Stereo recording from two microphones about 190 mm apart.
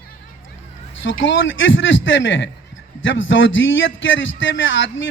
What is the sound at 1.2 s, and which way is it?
A man's voice, 75° left (ahead or behind).